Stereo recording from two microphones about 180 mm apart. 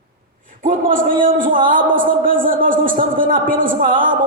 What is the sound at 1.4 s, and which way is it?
Speech, 50° right (ahead or behind).